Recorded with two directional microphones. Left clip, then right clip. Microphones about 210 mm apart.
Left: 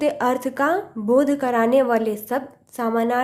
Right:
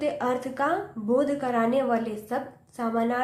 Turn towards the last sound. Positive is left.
turn(degrees=50)  # may be behind; listen again after turning